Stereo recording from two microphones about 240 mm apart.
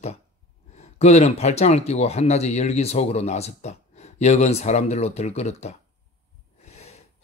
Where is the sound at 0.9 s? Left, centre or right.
Left.